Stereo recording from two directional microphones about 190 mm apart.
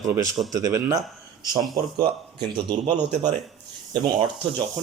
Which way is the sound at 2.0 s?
25° right (ahead or behind).